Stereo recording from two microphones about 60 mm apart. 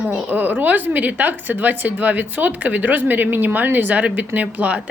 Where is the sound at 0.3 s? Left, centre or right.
Right.